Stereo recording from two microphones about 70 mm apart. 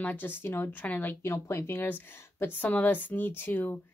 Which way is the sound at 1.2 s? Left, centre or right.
Left.